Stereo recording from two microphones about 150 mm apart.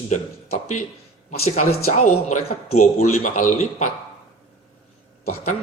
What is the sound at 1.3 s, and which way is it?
Speech, 45° left (ahead or behind).